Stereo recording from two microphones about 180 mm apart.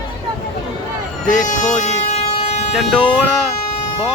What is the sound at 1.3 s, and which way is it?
Vehicle, 45° left (ahead or behind).